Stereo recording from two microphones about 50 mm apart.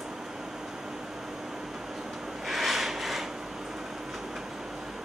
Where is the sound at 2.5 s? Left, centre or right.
Centre.